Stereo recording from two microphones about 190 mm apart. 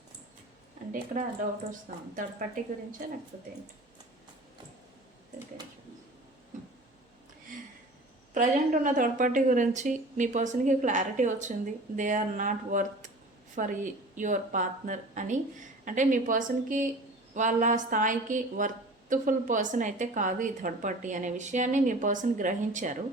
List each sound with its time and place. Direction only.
8.3 s a woman's voice: 40° right (ahead or behind)